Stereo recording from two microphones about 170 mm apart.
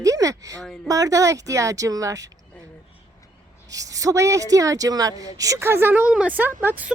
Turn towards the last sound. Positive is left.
turn(degrees=-10)  # may be behind; listen again after turning